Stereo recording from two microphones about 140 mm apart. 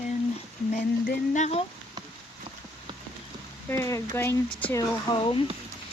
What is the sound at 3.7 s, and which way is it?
Speech, 20° left (ahead or behind).